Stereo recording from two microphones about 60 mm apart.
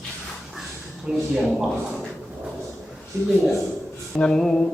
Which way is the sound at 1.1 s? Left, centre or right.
Centre.